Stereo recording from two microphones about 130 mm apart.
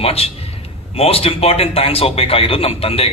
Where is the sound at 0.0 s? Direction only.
50° left (ahead or behind).